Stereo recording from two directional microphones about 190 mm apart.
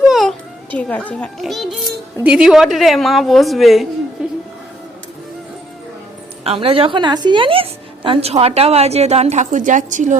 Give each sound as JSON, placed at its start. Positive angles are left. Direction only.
{"t": 0.1, "sound": "a child's voice", "side_deg": 0}
{"t": 6.4, "sound": "a woman's voice", "side_deg": -30}